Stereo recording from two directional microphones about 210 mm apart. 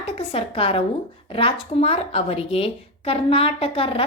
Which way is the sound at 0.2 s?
30° left (ahead or behind).